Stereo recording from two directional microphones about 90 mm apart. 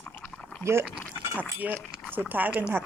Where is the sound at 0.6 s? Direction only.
30° right (ahead or behind).